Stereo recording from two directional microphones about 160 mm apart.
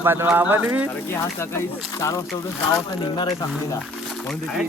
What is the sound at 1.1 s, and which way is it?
Speech, 15° left (ahead or behind).